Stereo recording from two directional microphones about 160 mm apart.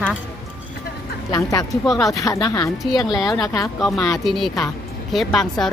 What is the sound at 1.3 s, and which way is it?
Speech, 25° left (ahead or behind).